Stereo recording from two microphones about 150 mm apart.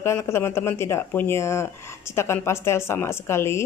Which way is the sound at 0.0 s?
20° left (ahead or behind).